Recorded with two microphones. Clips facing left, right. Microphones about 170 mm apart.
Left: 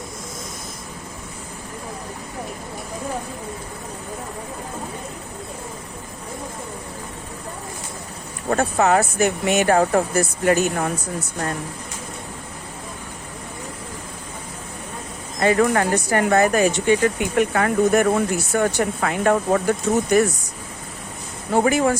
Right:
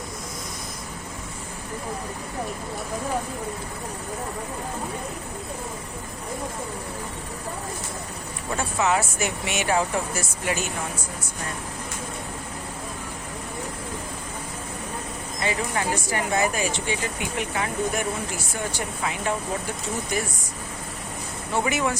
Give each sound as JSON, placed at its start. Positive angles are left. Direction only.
{"t": 8.4, "sound": "speech", "side_deg": 55}
{"t": 15.4, "sound": "speech", "side_deg": 55}
{"t": 21.5, "sound": "speech", "side_deg": 45}